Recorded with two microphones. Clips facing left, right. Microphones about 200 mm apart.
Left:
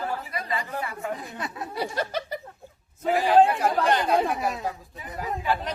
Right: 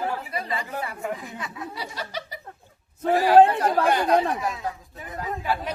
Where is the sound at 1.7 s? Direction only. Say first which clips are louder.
Left 5 dB; 55° left (ahead or behind).